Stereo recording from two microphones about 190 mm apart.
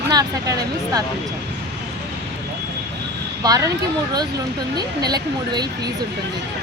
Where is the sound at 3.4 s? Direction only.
20° right (ahead or behind).